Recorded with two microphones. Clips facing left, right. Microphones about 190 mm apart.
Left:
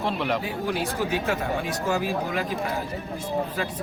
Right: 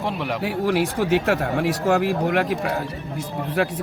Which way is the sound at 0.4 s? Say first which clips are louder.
Right 6 dB; 80° right.